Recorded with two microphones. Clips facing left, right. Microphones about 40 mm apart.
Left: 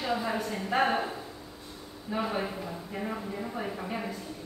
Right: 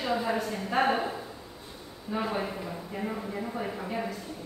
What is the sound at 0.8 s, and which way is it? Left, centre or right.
Speech, centre.